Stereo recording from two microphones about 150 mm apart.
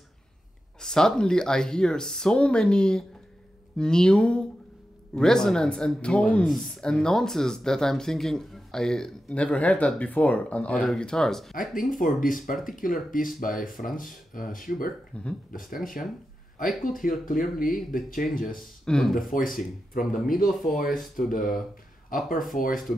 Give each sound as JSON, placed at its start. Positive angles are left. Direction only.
{"t": 0.7, "sound": "speech", "side_deg": 5}
{"t": 11.9, "sound": "speech", "side_deg": 65}
{"t": 15.1, "sound": "speech", "side_deg": 10}
{"t": 15.7, "sound": "speech", "side_deg": 65}
{"t": 18.6, "sound": "speech", "side_deg": 0}
{"t": 19.3, "sound": "speech", "side_deg": 65}